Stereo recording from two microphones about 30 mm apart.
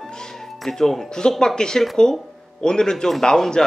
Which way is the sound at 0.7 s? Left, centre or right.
Centre.